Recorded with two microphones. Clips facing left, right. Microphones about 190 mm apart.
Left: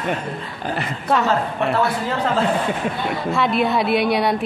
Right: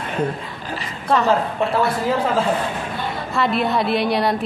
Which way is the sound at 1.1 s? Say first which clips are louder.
Right 2 dB; centre (ahead or behind).